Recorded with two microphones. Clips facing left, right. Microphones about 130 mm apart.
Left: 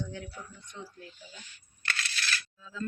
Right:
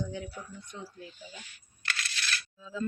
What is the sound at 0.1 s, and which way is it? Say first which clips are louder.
Speech: right 3 dB; 10° right (ahead or behind).